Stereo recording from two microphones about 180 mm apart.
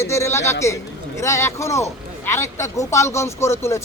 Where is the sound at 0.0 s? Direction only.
15° left (ahead or behind).